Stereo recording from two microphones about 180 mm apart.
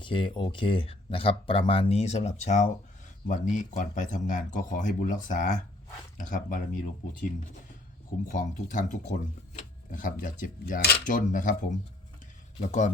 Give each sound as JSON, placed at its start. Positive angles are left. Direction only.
{"t": 0.0, "sound": "speech", "side_deg": 30}